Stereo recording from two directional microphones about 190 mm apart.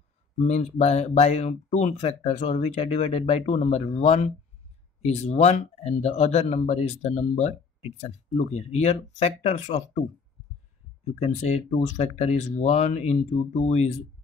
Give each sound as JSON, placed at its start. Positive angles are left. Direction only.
{"t": 0.4, "sound": "speech", "side_deg": 35}
{"t": 11.1, "sound": "speech", "side_deg": 35}